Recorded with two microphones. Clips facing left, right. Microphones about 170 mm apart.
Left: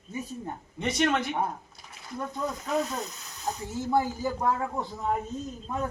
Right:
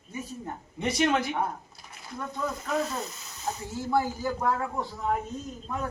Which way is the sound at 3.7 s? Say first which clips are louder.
Left 1 dB; 20° left (ahead or behind).